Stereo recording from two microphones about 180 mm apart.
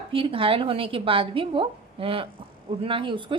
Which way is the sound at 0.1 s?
30° right (ahead or behind).